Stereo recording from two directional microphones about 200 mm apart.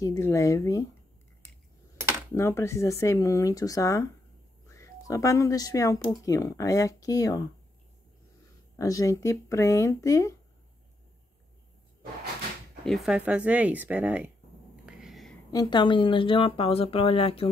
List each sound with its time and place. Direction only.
0.0 s speech: 15° left (ahead or behind)
2.3 s speech: 15° left (ahead or behind)
8.7 s speech: 15° left (ahead or behind)
12.8 s speech: centre (ahead or behind)
14.9 s a sound: centre (ahead or behind)
15.5 s speech: 20° left (ahead or behind)